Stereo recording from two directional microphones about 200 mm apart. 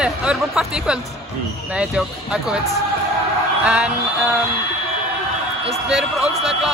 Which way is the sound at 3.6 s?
5° right (ahead or behind).